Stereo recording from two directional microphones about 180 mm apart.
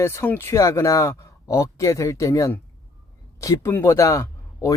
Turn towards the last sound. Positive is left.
turn(degrees=15)  # may be behind; listen again after turning